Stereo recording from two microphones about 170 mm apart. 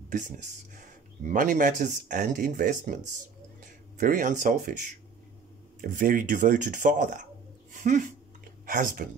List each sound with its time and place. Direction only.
0.1 s speech: 50° right (ahead or behind)
4.0 s speech: 50° right (ahead or behind)
7.7 s a sound: 50° right (ahead or behind)
8.6 s speech: 50° right (ahead or behind)